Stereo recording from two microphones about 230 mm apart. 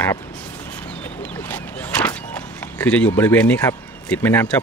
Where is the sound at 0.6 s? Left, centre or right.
Centre.